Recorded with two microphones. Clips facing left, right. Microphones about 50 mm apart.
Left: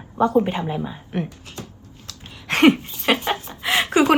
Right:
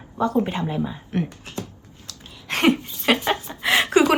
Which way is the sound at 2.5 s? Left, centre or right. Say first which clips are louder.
Left 5 dB; left.